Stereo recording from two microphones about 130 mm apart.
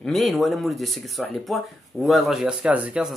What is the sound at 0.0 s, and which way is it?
Speech, centre (ahead or behind).